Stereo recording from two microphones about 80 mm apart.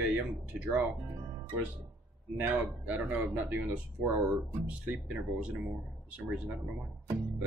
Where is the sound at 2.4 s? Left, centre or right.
Right.